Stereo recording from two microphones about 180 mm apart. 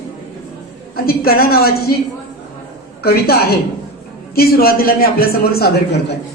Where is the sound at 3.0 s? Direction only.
60° left (ahead or behind).